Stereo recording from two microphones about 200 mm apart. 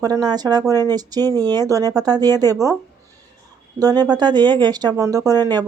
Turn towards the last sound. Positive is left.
turn(degrees=-20)  # may be behind; listen again after turning